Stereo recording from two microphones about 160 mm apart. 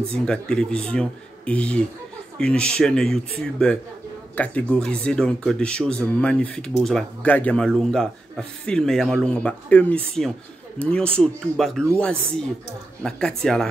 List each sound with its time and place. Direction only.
0.1 s speech: 5° left (ahead or behind)
13.0 s speech: 5° left (ahead or behind)